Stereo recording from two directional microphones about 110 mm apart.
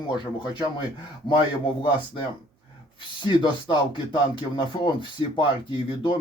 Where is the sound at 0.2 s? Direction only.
45° left (ahead or behind).